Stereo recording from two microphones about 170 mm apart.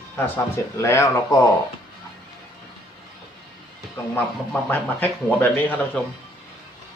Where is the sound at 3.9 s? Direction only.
10° left (ahead or behind).